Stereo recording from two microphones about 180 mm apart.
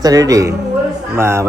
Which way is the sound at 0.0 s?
20° right (ahead or behind).